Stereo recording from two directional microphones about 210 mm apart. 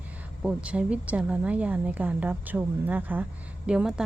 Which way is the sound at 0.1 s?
5° right (ahead or behind).